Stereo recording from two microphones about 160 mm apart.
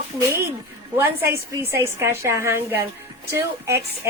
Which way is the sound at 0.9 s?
15° right (ahead or behind).